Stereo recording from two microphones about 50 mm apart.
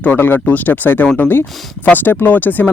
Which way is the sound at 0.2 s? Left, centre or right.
Left.